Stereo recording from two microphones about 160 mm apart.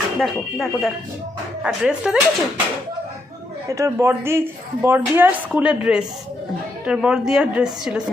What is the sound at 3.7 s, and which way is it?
A woman's voice, 20° right (ahead or behind).